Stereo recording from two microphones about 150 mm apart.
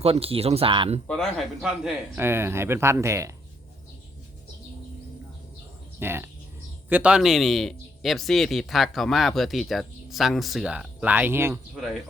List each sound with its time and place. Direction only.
0.0 s speech: 40° right (ahead or behind)
1.0 s speech: 5° left (ahead or behind); by 3.3 s 20° right (ahead or behind)
6.0 s a man's voice: 15° right (ahead or behind)